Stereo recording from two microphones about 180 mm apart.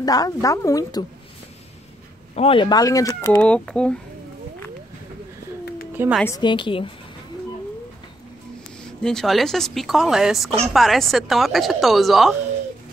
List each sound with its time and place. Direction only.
0.0 s speech: 20° left (ahead or behind)
2.3 s speech: 30° left (ahead or behind); by 4.0 s 5° left (ahead or behind)
6.2 s speech: 20° left (ahead or behind)
9.0 s speech: centre (ahead or behind)